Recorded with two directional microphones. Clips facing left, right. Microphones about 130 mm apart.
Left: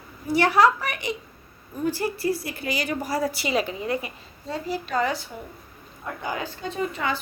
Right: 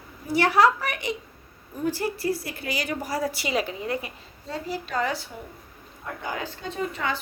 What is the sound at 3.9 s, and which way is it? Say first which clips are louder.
A woman's voice: left 2 dB; 15° left (ahead or behind).